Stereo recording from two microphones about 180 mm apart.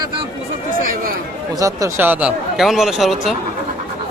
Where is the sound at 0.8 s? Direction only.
50° right (ahead or behind).